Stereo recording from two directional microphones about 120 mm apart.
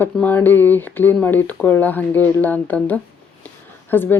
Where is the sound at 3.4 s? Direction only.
15° left (ahead or behind).